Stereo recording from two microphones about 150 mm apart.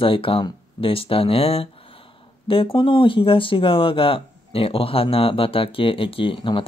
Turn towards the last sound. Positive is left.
turn(degrees=35)  # may be behind; listen again after turning